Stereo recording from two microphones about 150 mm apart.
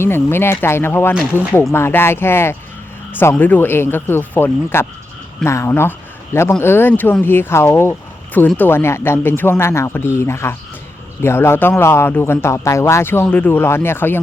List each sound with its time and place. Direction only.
0.0 s speech: 15° left (ahead or behind)